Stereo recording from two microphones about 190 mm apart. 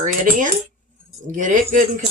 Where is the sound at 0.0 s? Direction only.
45° right (ahead or behind).